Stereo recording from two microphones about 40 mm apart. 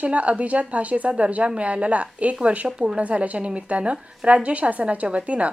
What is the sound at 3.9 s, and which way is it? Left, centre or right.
A woman's voice, right.